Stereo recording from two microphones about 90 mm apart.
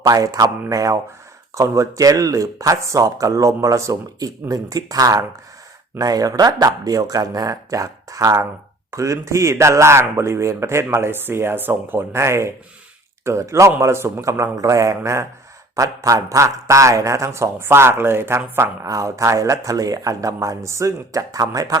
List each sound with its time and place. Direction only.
0.0 s a man's voice: 40° right (ahead or behind)